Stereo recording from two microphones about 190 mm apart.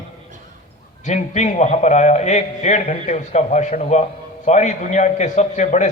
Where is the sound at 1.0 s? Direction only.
40° left (ahead or behind).